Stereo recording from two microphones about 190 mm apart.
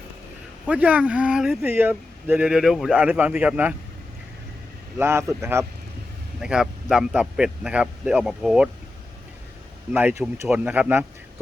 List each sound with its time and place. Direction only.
0.7 s speech: 10° right (ahead or behind)
4.9 s speech: 15° right (ahead or behind)
6.4 s speech: 5° right (ahead or behind)
9.9 s speech: 10° right (ahead or behind)